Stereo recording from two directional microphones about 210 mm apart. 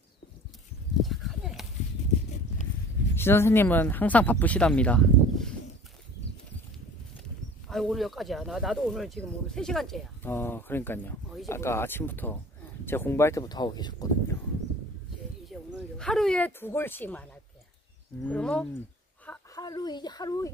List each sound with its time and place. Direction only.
1.0 s a sound: centre (ahead or behind)
3.2 s speech: 10° left (ahead or behind)
7.6 s speech: centre (ahead or behind); by 14.3 s 20° left (ahead or behind)
15.5 s speech: centre (ahead or behind)